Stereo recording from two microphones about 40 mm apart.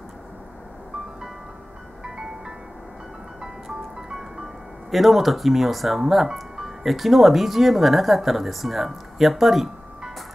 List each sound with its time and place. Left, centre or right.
2.1 s music: centre
3.6 s music: centre
4.9 s speech: centre